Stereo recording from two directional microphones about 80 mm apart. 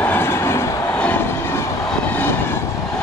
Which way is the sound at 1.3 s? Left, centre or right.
Left.